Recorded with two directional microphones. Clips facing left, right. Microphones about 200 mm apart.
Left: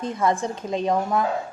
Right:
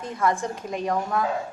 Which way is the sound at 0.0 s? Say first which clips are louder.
Left 2 dB; 20° left (ahead or behind).